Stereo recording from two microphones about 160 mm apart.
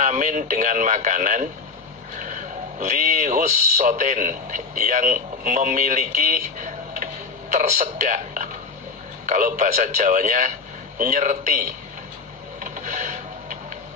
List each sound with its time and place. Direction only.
0.0 s speech: 50° right (ahead or behind)
12.5 s music: 50° right (ahead or behind)